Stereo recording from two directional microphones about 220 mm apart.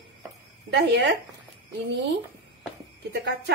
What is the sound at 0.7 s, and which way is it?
Speech, 55° right (ahead or behind).